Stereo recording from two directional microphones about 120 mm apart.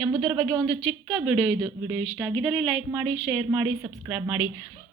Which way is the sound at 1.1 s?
10° right (ahead or behind).